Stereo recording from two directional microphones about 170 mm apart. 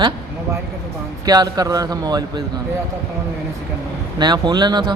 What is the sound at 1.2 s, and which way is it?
Speech, 20° right (ahead or behind).